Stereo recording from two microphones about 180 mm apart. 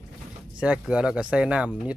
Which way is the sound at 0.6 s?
5° right (ahead or behind).